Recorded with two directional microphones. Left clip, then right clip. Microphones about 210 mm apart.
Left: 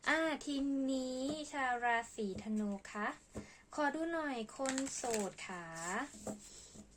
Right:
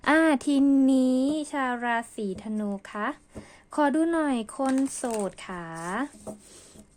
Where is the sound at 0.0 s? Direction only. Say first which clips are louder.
Right 13 dB; 50° right (ahead or behind).